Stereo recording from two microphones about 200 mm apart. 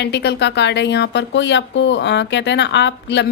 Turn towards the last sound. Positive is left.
turn(degrees=60)  # may be behind; listen again after turning